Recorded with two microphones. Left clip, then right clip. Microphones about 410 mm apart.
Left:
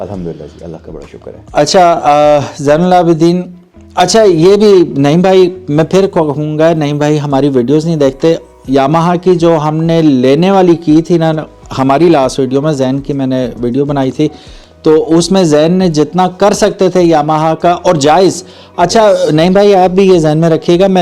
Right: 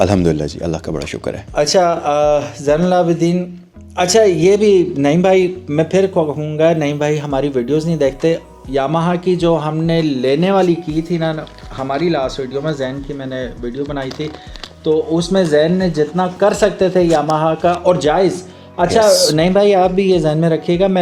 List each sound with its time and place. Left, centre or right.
0.0 s speech: right
1.5 s speech: left
4.9 s speech: centre
8.7 s speech: left